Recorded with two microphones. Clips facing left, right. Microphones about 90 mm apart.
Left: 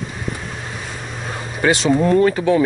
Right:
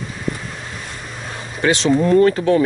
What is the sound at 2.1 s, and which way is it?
Speech, 10° left (ahead or behind).